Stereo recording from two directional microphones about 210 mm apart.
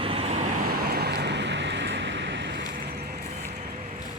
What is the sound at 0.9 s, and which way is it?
Vehicle, 50° right (ahead or behind).